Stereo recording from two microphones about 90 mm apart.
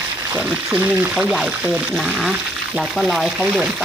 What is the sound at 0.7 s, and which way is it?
Speech, 15° right (ahead or behind).